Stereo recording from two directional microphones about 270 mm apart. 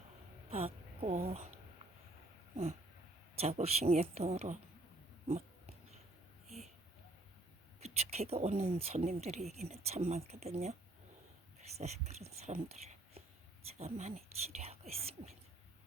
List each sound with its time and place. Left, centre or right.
0.5 s speech: right
3.3 s speech: right
7.8 s speech: right